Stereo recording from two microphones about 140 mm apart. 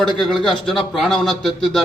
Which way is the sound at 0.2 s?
5° left (ahead or behind).